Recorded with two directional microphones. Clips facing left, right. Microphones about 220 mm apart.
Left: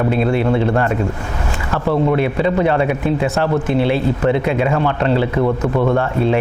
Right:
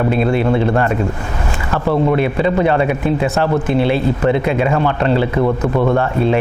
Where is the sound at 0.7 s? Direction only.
20° right (ahead or behind).